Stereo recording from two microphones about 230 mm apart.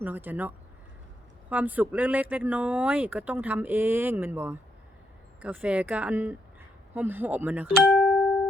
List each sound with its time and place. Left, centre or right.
0.0 s speech: centre